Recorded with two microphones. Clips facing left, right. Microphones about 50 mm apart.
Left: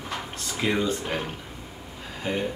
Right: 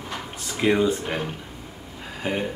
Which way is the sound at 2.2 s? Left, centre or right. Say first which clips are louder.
Right 2 dB; right.